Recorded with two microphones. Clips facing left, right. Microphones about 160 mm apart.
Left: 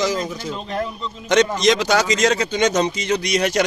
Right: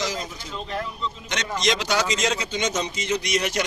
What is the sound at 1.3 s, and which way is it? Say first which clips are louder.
Speech: left 16 dB; 50° left (ahead or behind).